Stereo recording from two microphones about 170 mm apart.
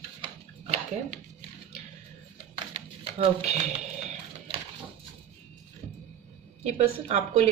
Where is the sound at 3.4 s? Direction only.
40° right (ahead or behind).